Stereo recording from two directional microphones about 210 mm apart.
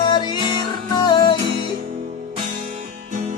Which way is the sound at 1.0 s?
20° left (ahead or behind).